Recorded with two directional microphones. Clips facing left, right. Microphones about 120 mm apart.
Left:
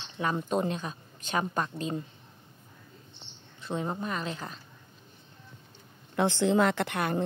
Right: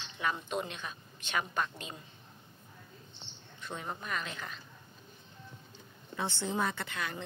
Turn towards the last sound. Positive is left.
turn(degrees=55)  # may be behind; listen again after turning